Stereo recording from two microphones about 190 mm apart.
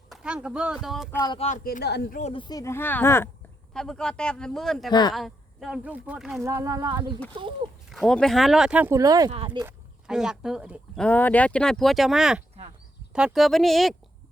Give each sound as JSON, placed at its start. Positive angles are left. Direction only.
{"t": 0.1, "sound": "speech", "side_deg": -5}
{"t": 1.6, "sound": "speech", "side_deg": 55}
{"t": 2.1, "sound": "speech", "side_deg": 30}
{"t": 3.8, "sound": "speech", "side_deg": 5}
{"t": 4.9, "sound": "speech", "side_deg": 20}
{"t": 5.1, "sound": "speech", "side_deg": 0}
{"t": 6.4, "sound": "speech", "side_deg": -15}
{"t": 7.9, "sound": "speech", "side_deg": 0}
{"t": 9.3, "sound": "speech", "side_deg": -30}
{"t": 10.1, "sound": "speech", "side_deg": -5}